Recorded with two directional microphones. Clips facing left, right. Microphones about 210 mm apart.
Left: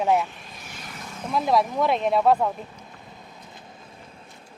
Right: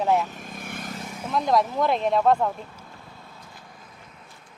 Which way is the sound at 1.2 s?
Centre (ahead or behind).